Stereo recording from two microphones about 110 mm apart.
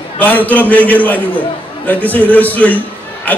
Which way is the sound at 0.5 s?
15° left (ahead or behind).